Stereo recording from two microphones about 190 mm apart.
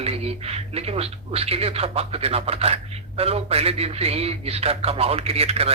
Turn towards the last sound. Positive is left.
turn(degrees=-30)  # may be behind; listen again after turning